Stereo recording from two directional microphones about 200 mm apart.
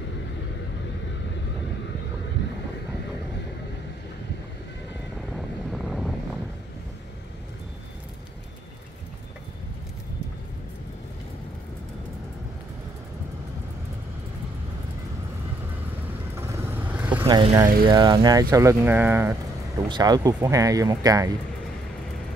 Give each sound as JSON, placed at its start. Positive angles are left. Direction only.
{"t": 5.3, "sound": "wind noise", "side_deg": 0}
{"t": 16.3, "sound": "vehicle", "side_deg": -10}
{"t": 17.3, "sound": "speech", "side_deg": -25}